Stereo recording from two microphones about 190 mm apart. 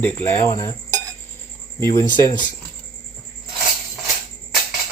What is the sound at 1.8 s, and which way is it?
Speech, 15° left (ahead or behind).